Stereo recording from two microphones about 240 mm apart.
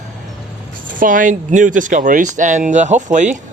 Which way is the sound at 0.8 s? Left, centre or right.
Right.